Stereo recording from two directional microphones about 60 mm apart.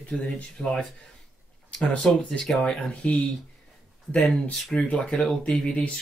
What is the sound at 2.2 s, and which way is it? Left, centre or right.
Speech, centre.